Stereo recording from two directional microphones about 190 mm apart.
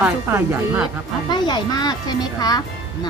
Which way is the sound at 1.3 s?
20° left (ahead or behind).